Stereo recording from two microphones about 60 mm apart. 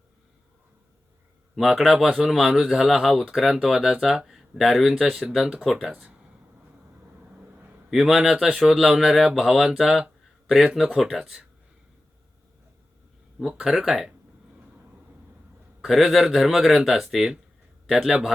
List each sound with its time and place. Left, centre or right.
1.5 s a man's voice: centre
5.9 s speech: right
7.9 s a man's voice: centre
13.7 s a man's voice: centre
15.8 s a man's voice: centre